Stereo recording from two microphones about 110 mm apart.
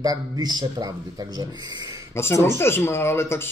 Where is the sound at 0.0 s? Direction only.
35° right (ahead or behind).